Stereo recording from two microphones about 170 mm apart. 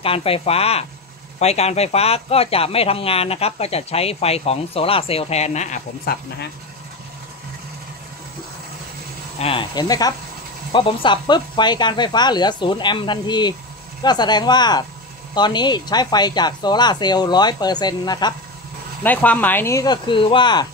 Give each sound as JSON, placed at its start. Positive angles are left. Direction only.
{"t": 0.0, "sound": "speech", "side_deg": 35}
{"t": 6.1, "sound": "speech", "side_deg": 65}
{"t": 9.4, "sound": "speech", "side_deg": 30}
{"t": 19.0, "sound": "speech", "side_deg": 10}